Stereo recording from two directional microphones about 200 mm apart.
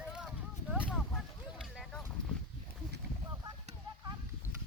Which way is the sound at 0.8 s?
5° left (ahead or behind).